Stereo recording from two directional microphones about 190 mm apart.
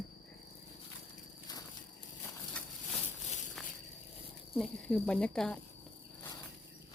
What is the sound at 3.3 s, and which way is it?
Walk, 40° left (ahead or behind).